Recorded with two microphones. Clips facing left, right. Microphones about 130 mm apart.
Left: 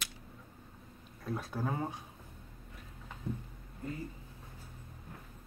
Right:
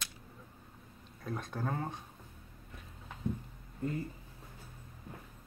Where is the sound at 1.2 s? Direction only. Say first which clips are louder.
Left 1 dB; 5° left (ahead or behind).